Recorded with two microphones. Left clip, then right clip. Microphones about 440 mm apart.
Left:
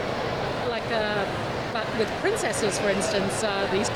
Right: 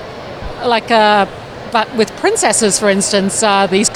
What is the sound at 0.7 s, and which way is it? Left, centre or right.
Speech, right.